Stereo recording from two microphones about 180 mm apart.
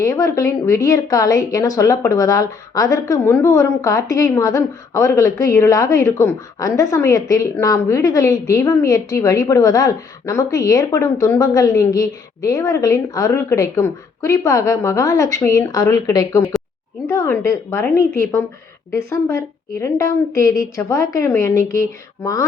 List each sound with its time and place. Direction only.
0.0 s a woman's voice: 20° left (ahead or behind)